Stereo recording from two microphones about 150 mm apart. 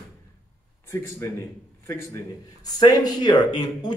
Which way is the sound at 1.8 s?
20° left (ahead or behind).